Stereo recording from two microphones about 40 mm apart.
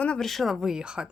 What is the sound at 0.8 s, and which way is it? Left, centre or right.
Speech, right.